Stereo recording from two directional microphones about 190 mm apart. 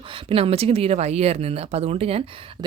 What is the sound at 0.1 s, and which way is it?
Speech, 30° right (ahead or behind).